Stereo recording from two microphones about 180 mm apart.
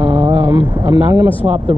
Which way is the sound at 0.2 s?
15° right (ahead or behind).